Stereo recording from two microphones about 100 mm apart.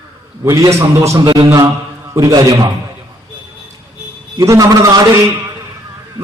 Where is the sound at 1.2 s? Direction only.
45° right (ahead or behind).